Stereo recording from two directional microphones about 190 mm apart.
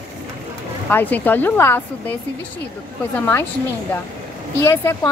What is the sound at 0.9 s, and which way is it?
Speech, 10° left (ahead or behind).